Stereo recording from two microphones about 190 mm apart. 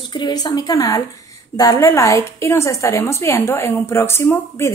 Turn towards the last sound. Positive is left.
turn(degrees=15)  # may be behind; listen again after turning